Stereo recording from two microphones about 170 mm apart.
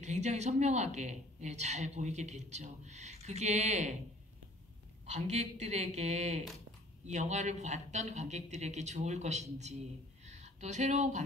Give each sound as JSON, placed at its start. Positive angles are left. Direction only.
{"t": 0.0, "sound": "speech", "side_deg": -40}
{"t": 5.0, "sound": "speech", "side_deg": -45}